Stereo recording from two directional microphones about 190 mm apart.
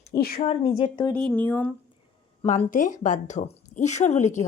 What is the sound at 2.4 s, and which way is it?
A woman's voice, 40° left (ahead or behind).